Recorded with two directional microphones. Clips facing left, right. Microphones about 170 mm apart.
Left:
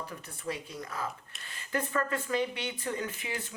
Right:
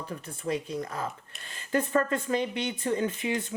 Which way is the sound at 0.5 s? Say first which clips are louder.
Right 6 dB; 40° right (ahead or behind).